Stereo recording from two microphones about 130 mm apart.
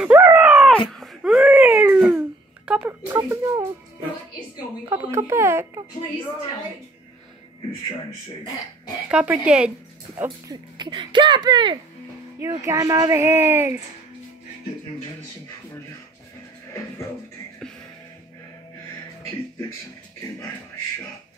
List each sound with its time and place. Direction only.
0.0 s dog: 10° right (ahead or behind)
0.7 s baby cry: 5° left (ahead or behind)
3.1 s speech: 25° right (ahead or behind)
4.8 s speech: 20° right (ahead or behind)
9.1 s speech: 10° right (ahead or behind)
10.2 s speech: 35° right (ahead or behind); by 13.7 s 20° right (ahead or behind)